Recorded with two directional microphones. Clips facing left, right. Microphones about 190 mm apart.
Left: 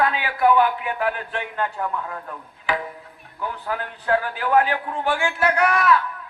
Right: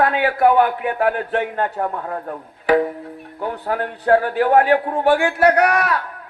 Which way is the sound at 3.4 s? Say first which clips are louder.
Right 5 dB; 55° right (ahead or behind).